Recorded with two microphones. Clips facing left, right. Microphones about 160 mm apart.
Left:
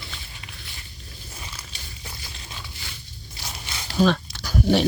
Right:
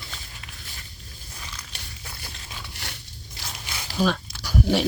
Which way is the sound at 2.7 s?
70° right (ahead or behind).